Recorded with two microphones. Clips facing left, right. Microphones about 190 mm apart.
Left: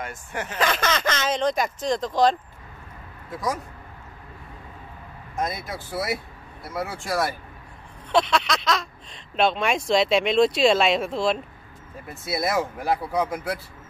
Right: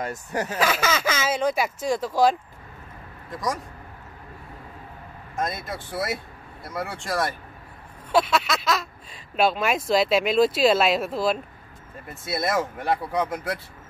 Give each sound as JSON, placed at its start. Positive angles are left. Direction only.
{"t": 0.0, "sound": "speech", "side_deg": -40}
{"t": 0.6, "sound": "speech", "side_deg": -5}
{"t": 3.3, "sound": "speech", "side_deg": 5}
{"t": 5.3, "sound": "speech", "side_deg": 0}